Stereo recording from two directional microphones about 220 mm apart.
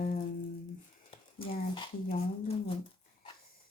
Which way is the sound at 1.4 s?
20° left (ahead or behind).